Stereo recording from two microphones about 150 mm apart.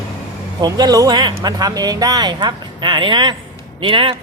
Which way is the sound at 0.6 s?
25° right (ahead or behind).